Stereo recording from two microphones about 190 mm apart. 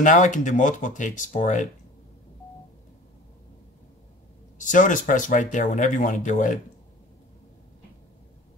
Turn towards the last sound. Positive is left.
turn(degrees=40)  # may be behind; listen again after turning